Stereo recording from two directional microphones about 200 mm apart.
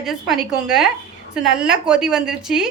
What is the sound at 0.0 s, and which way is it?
A woman's voice, centre (ahead or behind).